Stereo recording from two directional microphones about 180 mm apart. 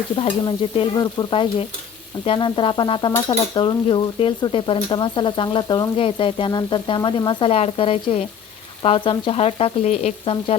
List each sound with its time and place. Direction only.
0.2 s stir: 30° left (ahead or behind)
8.8 s speech: 30° left (ahead or behind)